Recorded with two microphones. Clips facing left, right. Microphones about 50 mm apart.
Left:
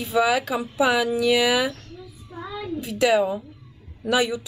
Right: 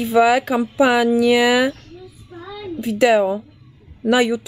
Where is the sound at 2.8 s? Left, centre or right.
Right.